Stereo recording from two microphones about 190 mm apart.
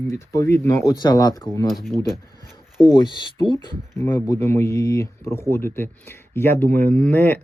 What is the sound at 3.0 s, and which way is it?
Speech, 25° left (ahead or behind).